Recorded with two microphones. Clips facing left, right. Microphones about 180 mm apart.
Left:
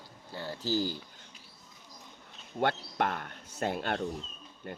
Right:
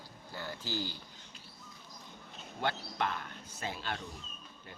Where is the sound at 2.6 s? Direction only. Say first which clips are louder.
Left 5 dB; 55° left (ahead or behind).